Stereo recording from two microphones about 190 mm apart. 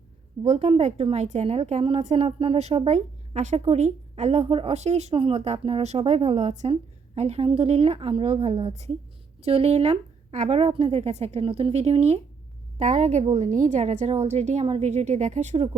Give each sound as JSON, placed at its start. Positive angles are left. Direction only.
{"t": 0.4, "sound": "a woman's voice", "side_deg": -35}